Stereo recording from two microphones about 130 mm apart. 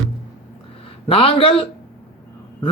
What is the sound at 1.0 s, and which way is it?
Speech, 45° left (ahead or behind).